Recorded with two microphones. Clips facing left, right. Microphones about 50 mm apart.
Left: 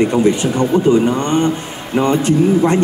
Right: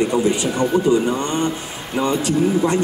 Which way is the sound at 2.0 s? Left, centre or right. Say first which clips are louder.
Left 4 dB; left.